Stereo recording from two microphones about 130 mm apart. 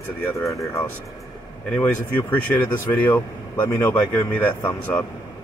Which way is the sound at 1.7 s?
15° left (ahead or behind).